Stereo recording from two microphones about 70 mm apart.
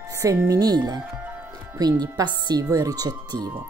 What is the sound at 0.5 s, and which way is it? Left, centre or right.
Speech, right.